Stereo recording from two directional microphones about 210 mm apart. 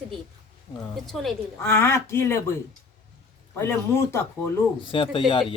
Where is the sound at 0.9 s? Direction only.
Centre (ahead or behind).